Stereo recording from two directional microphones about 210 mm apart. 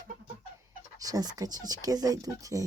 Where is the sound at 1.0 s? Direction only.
20° right (ahead or behind).